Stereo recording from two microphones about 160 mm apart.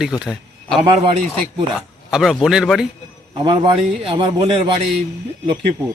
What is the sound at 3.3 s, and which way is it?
A man's voice, 30° right (ahead or behind).